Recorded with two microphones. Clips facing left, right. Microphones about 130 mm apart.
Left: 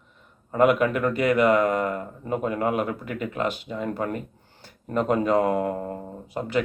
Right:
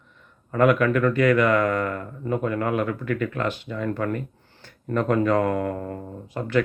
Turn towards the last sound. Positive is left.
turn(degrees=15)  # may be behind; listen again after turning